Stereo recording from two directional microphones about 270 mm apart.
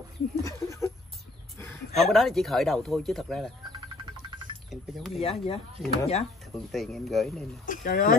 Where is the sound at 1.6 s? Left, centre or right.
Centre.